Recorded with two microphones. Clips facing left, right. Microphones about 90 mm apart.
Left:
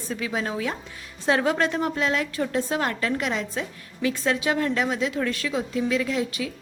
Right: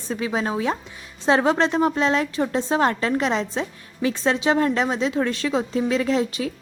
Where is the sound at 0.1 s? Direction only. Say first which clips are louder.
Right 4 dB; 30° right (ahead or behind).